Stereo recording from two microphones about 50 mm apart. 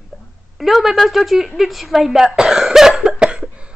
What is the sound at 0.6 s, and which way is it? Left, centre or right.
A woman's voice, centre.